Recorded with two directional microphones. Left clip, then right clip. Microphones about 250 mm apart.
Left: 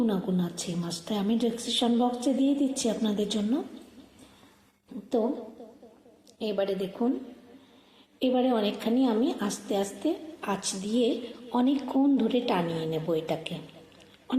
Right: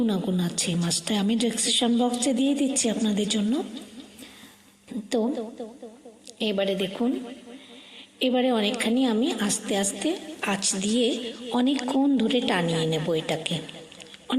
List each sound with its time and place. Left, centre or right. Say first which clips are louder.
0.0 s a woman's voice: right 2 dB; right
6.4 s a woman's voice: right 3 dB; right
8.2 s a woman's voice: right 2 dB; right